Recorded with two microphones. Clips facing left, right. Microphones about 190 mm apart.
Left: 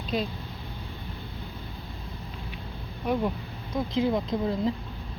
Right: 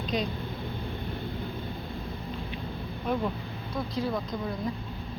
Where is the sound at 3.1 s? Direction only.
10° left (ahead or behind).